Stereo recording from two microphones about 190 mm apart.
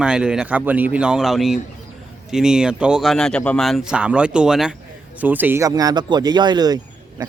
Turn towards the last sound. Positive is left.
turn(degrees=-20)  # may be behind; listen again after turning